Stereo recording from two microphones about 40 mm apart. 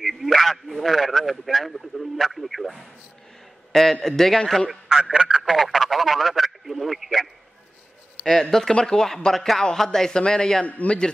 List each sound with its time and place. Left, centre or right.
0.0 s a sound: centre
3.7 s a man's voice: centre
4.6 s speech: centre
5.4 s radio: centre
8.3 s a man's voice: centre
10.6 s a man's voice: left